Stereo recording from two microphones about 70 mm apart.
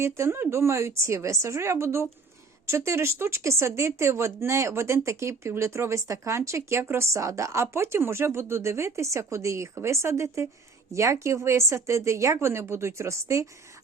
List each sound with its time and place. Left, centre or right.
0.0 s a woman's voice: right